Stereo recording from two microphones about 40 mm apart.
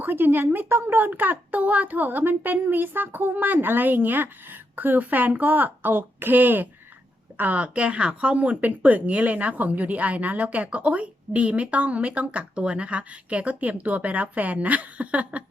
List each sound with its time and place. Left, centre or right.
0.0 s a woman's voice: right
5.9 s speech: right
7.3 s speech: right